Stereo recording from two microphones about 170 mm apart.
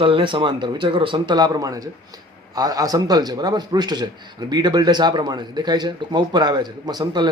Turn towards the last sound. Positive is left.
turn(degrees=-25)  # may be behind; listen again after turning